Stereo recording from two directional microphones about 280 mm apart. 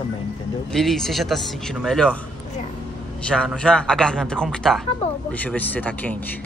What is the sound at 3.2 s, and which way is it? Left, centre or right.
Speech, centre.